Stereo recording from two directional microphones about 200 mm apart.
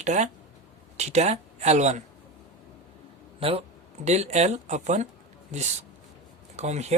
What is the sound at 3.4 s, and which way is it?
Speech, 25° right (ahead or behind).